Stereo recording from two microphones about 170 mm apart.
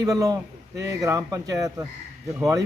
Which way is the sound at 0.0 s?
20° right (ahead or behind).